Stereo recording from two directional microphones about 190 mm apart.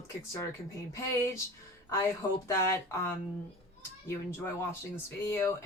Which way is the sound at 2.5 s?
15° left (ahead or behind).